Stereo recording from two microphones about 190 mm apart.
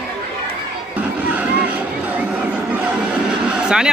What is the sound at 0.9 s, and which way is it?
Crowd, 10° right (ahead or behind).